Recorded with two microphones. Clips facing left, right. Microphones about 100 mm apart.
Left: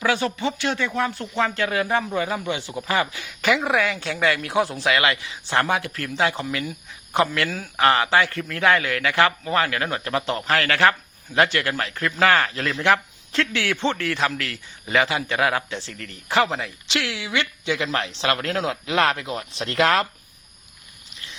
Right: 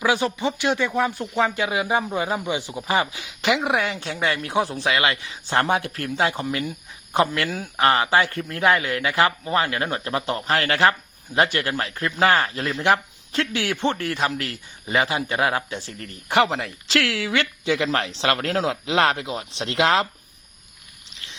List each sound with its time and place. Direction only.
0.0 s speech: 15° right (ahead or behind)
3.8 s speech: 30° right (ahead or behind)
5.2 s speech: 35° right (ahead or behind)
6.1 s speech: 25° right (ahead or behind)
16.6 s speech: 45° right (ahead or behind)